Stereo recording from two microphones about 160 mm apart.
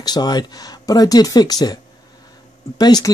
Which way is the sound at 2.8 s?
25° left (ahead or behind).